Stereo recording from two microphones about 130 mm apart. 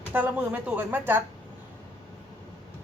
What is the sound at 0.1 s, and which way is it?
A woman's voice, 15° right (ahead or behind).